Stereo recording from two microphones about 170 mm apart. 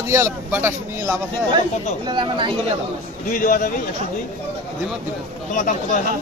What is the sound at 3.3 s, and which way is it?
Speech, 50° left (ahead or behind).